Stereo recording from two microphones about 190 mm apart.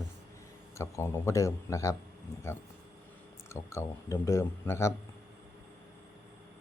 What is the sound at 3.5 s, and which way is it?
Speech, 15° left (ahead or behind).